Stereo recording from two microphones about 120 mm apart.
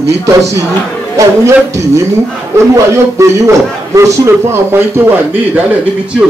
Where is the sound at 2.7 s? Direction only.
25° right (ahead or behind).